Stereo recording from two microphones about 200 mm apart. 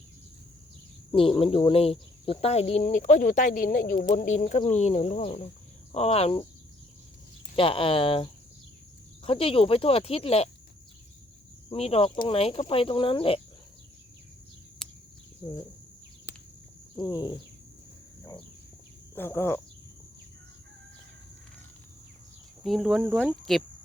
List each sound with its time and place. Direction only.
1.1 s speech: 25° left (ahead or behind)
7.5 s speech: 25° left (ahead or behind)
11.7 s speech: 30° left (ahead or behind)
14.8 s a sound: 5° left (ahead or behind)
17.0 s speech: 20° left (ahead or behind)
19.1 s speech: 10° left (ahead or behind)
22.6 s speech: centre (ahead or behind)